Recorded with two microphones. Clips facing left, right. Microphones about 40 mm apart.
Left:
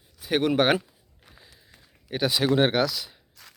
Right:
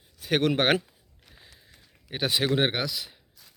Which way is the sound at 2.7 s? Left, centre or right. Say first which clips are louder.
Left 6 dB; centre.